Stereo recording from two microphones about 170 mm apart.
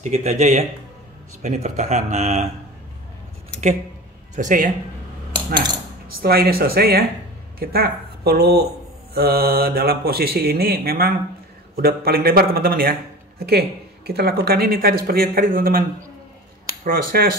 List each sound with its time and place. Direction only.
0.0 s a man's voice: 45° right (ahead or behind)
4.4 s a man's voice: 50° right (ahead or behind)
5.3 s cutlery: 25° right (ahead or behind)
6.2 s speech: 65° right (ahead or behind)
16.8 s speech: 60° right (ahead or behind)